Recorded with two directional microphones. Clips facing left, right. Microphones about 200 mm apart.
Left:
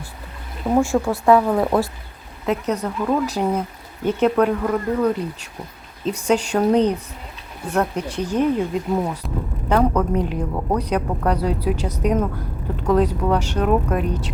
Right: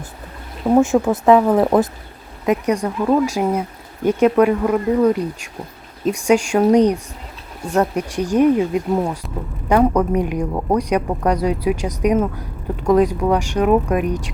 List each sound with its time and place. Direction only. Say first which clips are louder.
0.7 s a woman's voice: right 4 dB; 20° right (ahead or behind)